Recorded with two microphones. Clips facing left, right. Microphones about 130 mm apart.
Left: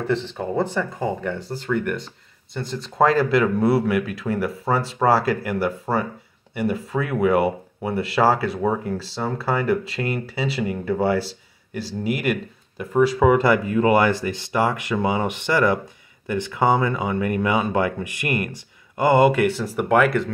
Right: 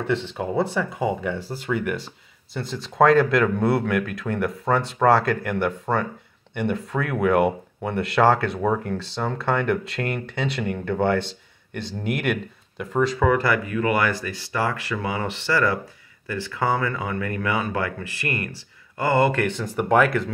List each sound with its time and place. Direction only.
0.0 s speech: 5° right (ahead or behind)